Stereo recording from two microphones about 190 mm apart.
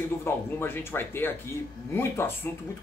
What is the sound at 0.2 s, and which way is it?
Speech, 10° left (ahead or behind).